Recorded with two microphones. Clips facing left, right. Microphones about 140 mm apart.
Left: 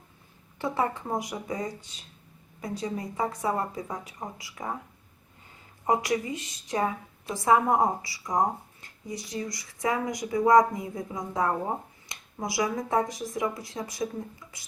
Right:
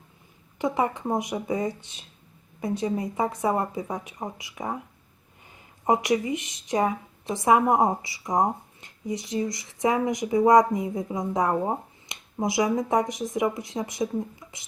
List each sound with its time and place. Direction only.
0.6 s a woman's voice: 15° right (ahead or behind)
5.8 s a woman's voice: 20° right (ahead or behind)